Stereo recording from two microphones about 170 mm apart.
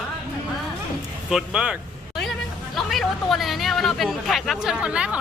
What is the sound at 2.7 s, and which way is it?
Speech, centre (ahead or behind).